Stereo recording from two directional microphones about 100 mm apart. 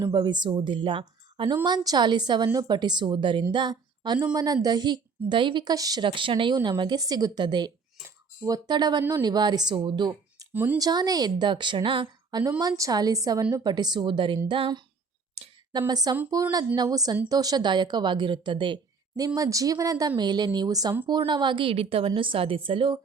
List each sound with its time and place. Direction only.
0.0 s a woman's voice: 45° right (ahead or behind)
1.6 s a woman's voice: 40° right (ahead or behind)
5.6 s a woman's voice: 40° right (ahead or behind)
6.0 s a woman's voice: 60° right (ahead or behind); by 10.4 s 45° right (ahead or behind)
10.5 s speech: 20° right (ahead or behind)
10.8 s a woman's voice: 40° right (ahead or behind); by 12.0 s 60° right (ahead or behind)
12.3 s a woman's voice: 40° right (ahead or behind)
15.9 s a woman's voice: 40° right (ahead or behind)
19.2 s a woman's voice: 35° right (ahead or behind)
21.1 s a woman's voice: 50° right (ahead or behind)